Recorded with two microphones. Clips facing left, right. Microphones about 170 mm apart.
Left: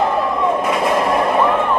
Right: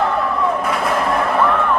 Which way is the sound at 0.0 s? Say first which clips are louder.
Left 1 dB; 20° left (ahead or behind).